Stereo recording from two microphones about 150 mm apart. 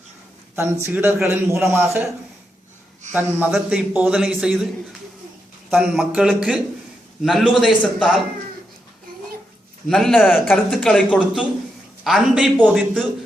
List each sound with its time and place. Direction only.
0.5 s a man's voice: 15° right (ahead or behind)
3.1 s a man's voice: 15° right (ahead or behind)
9.9 s a man's voice: centre (ahead or behind)
12.7 s a man's voice: 5° left (ahead or behind)